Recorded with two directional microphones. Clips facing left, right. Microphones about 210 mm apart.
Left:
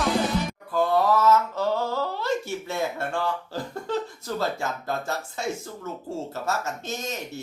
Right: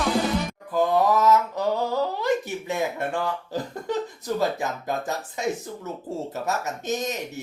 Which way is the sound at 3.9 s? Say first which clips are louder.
Right 2 dB; 15° right (ahead or behind).